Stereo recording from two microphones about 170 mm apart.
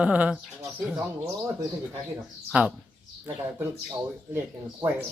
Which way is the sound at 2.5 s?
10° right (ahead or behind).